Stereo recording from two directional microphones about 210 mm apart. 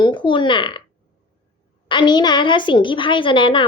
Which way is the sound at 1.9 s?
20° left (ahead or behind).